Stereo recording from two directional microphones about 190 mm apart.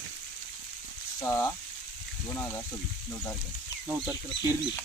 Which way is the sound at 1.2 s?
15° left (ahead or behind).